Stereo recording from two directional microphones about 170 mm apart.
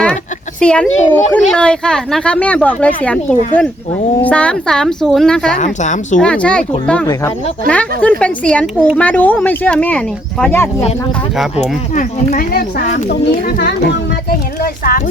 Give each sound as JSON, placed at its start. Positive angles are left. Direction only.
{"t": 0.6, "sound": "a woman's voice", "side_deg": 5}
{"t": 5.5, "sound": "speech", "side_deg": 45}
{"t": 6.1, "sound": "speech", "side_deg": 5}
{"t": 11.5, "sound": "speech", "side_deg": 40}
{"t": 12.4, "sound": "speech", "side_deg": 60}
{"t": 13.1, "sound": "speech", "side_deg": 75}
{"t": 14.3, "sound": "speech", "side_deg": 60}